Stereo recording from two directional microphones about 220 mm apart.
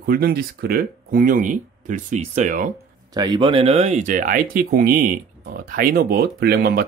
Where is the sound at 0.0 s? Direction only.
40° right (ahead or behind).